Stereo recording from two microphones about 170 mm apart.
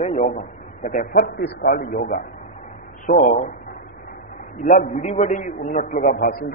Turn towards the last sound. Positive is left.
turn(degrees=55)  # may be behind; listen again after turning